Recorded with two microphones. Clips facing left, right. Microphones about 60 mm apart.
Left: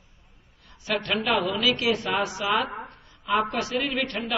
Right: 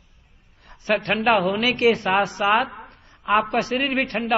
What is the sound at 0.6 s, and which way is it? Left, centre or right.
A woman's voice, right.